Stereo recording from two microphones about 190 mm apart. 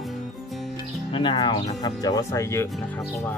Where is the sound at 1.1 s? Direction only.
25° left (ahead or behind).